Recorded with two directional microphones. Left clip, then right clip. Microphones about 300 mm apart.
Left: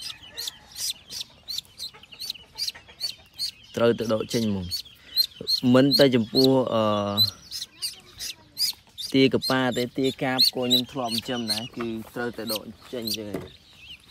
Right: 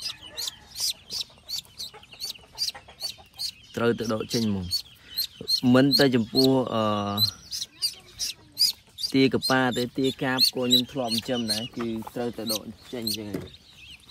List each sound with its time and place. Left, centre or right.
0.7 s bird: centre
5.6 s speech: centre
7.4 s bird: centre
9.5 s speech: centre